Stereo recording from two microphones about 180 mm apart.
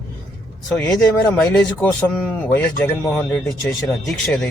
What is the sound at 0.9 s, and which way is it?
Speech, 5° left (ahead or behind).